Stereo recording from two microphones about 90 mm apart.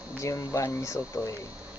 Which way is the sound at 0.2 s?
35° left (ahead or behind).